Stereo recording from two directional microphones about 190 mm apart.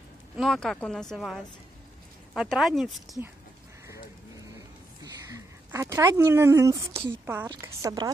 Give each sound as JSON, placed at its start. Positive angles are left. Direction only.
{"t": 0.4, "sound": "speech", "side_deg": 0}
{"t": 5.0, "sound": "a woman's voice", "side_deg": -15}